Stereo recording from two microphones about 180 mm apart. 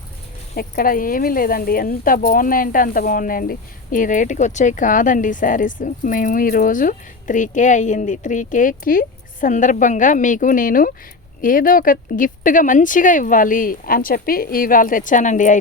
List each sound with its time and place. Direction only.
0.5 s speech: 55° left (ahead or behind)